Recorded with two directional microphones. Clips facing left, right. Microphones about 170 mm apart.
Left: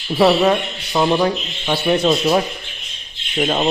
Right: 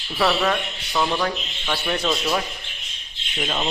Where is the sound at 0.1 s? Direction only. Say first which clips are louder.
Left 7 dB; 25° left (ahead or behind).